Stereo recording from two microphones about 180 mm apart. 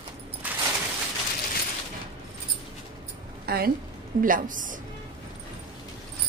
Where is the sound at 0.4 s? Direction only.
10° right (ahead or behind).